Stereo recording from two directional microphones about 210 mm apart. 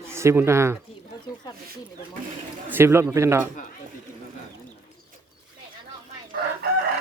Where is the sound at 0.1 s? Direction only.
10° right (ahead or behind).